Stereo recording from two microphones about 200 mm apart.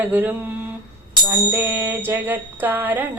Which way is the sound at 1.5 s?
10° right (ahead or behind).